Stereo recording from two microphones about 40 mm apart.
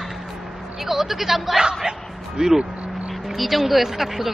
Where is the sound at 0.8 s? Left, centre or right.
Centre.